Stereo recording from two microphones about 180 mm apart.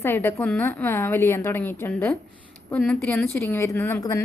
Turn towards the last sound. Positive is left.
turn(degrees=20)  # may be behind; listen again after turning